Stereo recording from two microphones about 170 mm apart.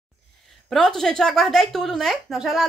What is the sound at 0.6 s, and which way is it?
A woman's voice, 5° left (ahead or behind).